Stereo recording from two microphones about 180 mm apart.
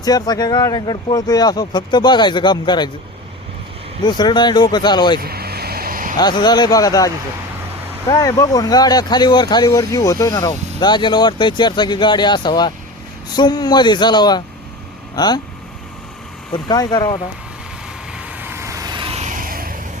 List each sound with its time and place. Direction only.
0.0 s speech: 20° left (ahead or behind)
4.0 s speech: 25° left (ahead or behind)
5.2 s vehicle: 60° right (ahead or behind)
6.1 s speech: 25° left (ahead or behind)
16.5 s speech: 20° left (ahead or behind)
18.2 s vehicle: 10° right (ahead or behind); by 19.7 s 55° right (ahead or behind)